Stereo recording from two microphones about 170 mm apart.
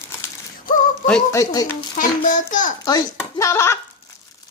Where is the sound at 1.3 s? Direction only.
20° left (ahead or behind).